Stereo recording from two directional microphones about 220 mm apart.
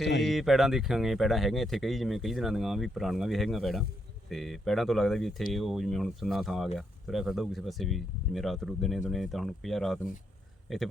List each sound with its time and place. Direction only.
0.2 s speech: centre (ahead or behind)